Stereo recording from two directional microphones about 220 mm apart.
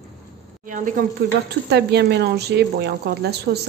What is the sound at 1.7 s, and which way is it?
Speech, 50° right (ahead or behind).